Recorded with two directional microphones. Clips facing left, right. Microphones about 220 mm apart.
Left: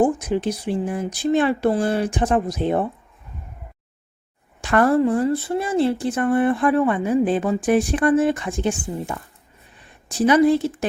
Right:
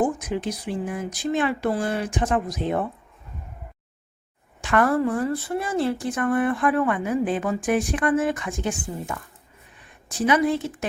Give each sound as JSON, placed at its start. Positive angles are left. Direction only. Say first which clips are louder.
{"t": 0.0, "sound": "speech", "louder": "left 5 dB", "side_deg": 30}
{"t": 4.6, "sound": "a woman's voice", "louder": "left 4 dB", "side_deg": 35}